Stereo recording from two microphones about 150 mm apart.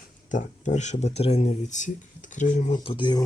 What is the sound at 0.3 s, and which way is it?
Speech, 55° left (ahead or behind).